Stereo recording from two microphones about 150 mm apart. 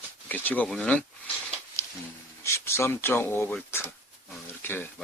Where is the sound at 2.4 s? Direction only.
20° left (ahead or behind).